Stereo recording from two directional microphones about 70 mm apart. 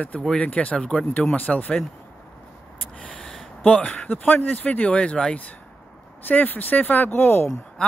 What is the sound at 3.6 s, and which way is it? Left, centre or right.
Speech, centre.